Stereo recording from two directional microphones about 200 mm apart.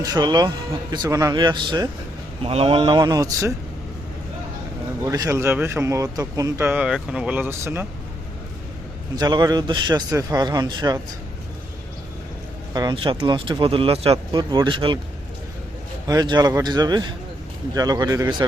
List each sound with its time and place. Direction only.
0.0 s speech: 20° right (ahead or behind)
5.0 s speech: 15° right (ahead or behind)
9.1 s speech: 20° right (ahead or behind)
12.7 s speech: 20° right (ahead or behind)
16.0 s speech: 20° right (ahead or behind)